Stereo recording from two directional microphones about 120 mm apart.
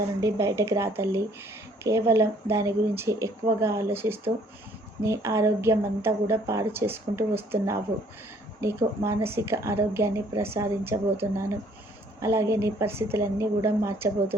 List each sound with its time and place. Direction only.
0.2 s a woman's voice: 25° right (ahead or behind)
9.0 s a woman's voice: 20° right (ahead or behind)